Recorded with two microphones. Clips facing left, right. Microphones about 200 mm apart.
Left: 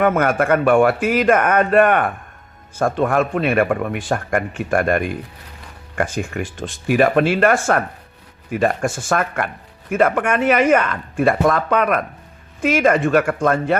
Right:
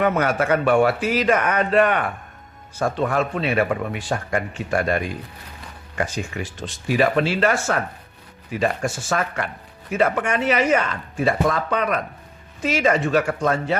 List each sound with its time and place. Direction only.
0.0 s a man's voice: 50° left (ahead or behind)